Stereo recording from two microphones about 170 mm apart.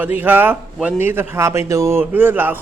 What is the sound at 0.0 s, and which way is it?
A man's voice, 10° right (ahead or behind).